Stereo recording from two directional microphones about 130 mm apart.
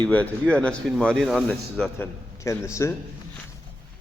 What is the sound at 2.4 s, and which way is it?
Speech, 20° left (ahead or behind).